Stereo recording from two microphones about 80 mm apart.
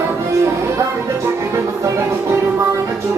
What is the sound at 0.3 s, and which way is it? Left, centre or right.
Music, right.